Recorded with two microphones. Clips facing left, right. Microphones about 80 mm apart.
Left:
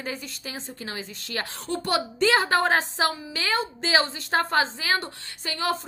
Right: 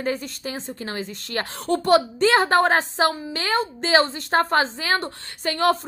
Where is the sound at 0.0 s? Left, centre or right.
Right.